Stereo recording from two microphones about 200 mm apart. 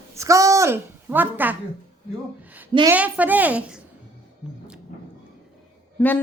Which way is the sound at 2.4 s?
10° right (ahead or behind).